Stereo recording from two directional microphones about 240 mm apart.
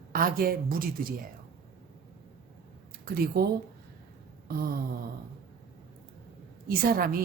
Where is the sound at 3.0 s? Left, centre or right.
Right.